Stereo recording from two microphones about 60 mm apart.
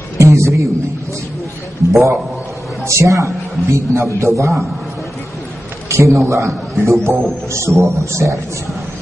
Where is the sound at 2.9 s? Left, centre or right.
Right.